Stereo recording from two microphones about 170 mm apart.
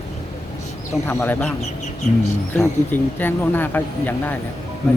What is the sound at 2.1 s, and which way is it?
Speech, 45° left (ahead or behind).